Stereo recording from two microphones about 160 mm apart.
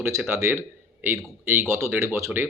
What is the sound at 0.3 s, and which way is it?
Speech, 15° right (ahead or behind).